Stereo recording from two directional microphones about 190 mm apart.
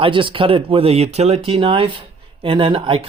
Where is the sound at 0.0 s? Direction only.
25° right (ahead or behind).